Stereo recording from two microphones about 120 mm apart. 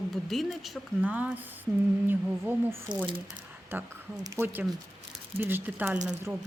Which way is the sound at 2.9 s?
90° right.